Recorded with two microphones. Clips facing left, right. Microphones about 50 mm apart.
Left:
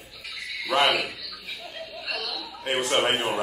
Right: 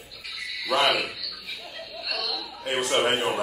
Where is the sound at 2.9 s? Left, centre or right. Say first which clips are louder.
Right 1 dB; centre.